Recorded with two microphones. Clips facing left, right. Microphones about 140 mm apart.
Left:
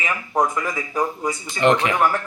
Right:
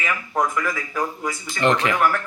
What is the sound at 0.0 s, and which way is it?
Speech, 20° left (ahead or behind).